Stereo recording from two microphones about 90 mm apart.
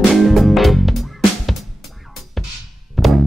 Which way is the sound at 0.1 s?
Centre (ahead or behind).